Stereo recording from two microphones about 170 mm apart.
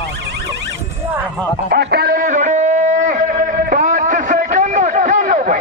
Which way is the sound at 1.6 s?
70° right (ahead or behind).